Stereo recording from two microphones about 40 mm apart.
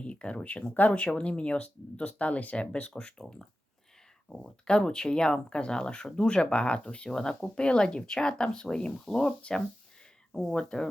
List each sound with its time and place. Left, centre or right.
0.0 s speech: left
3.0 s speech: left
10.5 s speech: left